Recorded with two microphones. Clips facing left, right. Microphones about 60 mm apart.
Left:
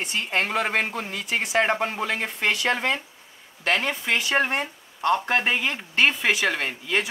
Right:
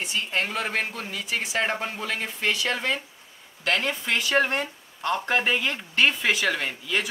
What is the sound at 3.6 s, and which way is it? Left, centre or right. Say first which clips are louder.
Speech: left 1 dB; centre.